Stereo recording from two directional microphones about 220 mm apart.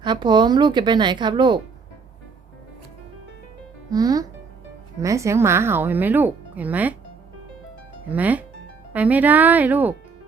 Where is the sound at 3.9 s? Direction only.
15° right (ahead or behind).